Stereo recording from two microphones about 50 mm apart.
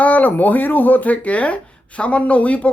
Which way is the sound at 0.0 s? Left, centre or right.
Left.